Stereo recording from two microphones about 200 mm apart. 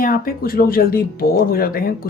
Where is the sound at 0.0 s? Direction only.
45° left (ahead or behind).